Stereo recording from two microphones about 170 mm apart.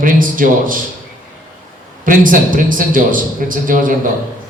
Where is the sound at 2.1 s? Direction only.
55° right (ahead or behind).